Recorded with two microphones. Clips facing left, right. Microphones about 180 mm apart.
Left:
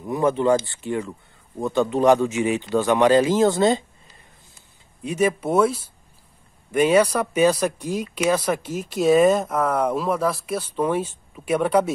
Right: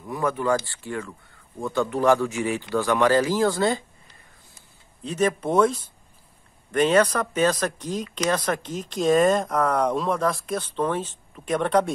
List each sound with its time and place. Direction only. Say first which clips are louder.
0.0 s a man's voice: left 5 dB; 20° left (ahead or behind)
5.0 s speech: left 2 dB; 10° left (ahead or behind)